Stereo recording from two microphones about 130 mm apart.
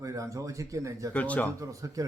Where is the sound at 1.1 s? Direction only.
10° left (ahead or behind).